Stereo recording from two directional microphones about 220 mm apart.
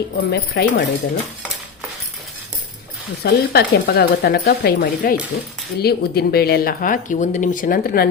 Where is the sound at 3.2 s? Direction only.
45° left (ahead or behind).